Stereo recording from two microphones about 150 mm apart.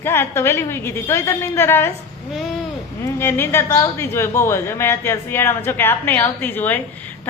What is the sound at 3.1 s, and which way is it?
A woman's voice, 15° left (ahead or behind).